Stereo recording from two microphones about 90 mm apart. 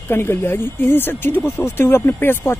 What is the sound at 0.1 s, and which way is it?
Speech, 25° left (ahead or behind).